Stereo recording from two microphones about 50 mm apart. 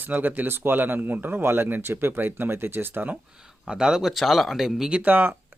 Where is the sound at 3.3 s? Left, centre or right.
Centre.